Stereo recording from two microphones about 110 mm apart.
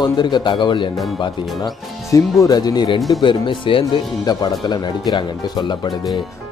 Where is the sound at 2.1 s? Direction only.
30° left (ahead or behind).